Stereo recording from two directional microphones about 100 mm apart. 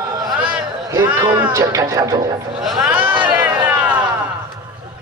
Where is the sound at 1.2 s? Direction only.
35° right (ahead or behind).